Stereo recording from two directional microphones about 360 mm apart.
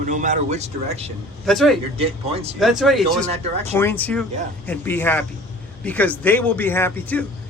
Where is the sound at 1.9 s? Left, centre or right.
Centre.